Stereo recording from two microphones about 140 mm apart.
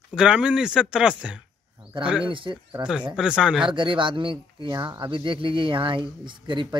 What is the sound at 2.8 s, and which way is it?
Speech, 20° right (ahead or behind).